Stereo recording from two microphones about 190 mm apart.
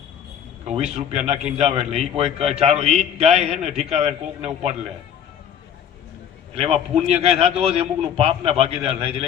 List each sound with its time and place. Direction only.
0.7 s a man's voice: 35° right (ahead or behind)
6.6 s a man's voice: 35° right (ahead or behind)